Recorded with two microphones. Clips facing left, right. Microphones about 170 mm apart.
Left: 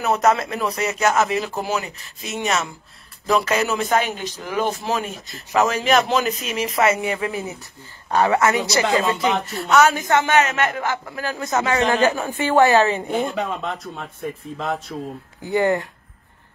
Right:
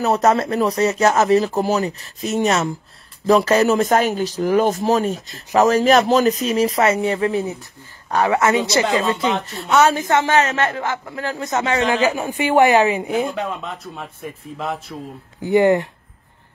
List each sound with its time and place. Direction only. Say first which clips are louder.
0.0 s speech: right 2 dB; 35° right (ahead or behind)
7.1 s speech: right 5 dB; 10° left (ahead or behind)
8.2 s a woman's voice: right 1 dB; 20° right (ahead or behind)
11.9 s a woman's voice: even; 15° right (ahead or behind)
15.4 s a woman's voice: right 5 dB; 20° right (ahead or behind)